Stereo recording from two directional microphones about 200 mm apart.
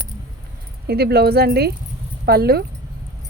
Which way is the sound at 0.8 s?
50° right (ahead or behind).